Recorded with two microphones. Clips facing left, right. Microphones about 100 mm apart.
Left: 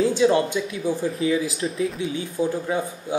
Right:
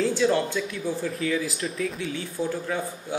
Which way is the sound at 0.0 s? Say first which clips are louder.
Left 4 dB; 15° left (ahead or behind).